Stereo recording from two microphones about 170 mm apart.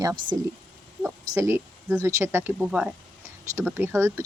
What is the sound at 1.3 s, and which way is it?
Speech, 15° right (ahead or behind).